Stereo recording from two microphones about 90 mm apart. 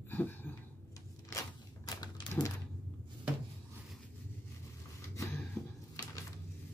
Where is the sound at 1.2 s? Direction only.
40° left (ahead or behind).